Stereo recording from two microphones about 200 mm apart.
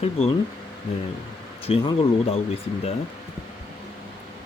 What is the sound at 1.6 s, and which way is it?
Speech, 30° left (ahead or behind).